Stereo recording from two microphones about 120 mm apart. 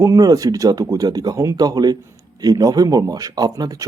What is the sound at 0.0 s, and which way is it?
Speech, 30° right (ahead or behind).